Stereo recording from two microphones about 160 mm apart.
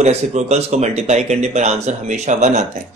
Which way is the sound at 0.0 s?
45° right (ahead or behind).